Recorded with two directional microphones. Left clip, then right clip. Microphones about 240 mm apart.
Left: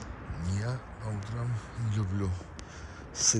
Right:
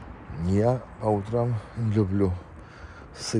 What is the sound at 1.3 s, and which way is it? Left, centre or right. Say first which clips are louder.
Speech: right 14 dB; right.